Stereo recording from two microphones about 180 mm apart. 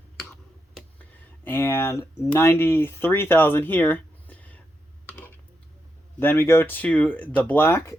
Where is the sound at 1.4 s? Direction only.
10° left (ahead or behind).